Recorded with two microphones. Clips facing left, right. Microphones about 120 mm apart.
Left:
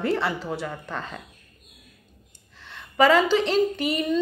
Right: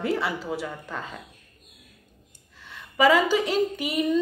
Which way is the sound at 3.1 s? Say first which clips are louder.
Right 1 dB; 10° right (ahead or behind).